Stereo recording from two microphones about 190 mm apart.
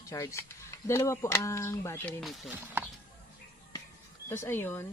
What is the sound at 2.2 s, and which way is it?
Speech, centre (ahead or behind).